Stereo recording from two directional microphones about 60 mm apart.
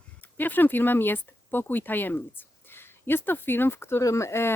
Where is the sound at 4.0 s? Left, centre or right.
Left.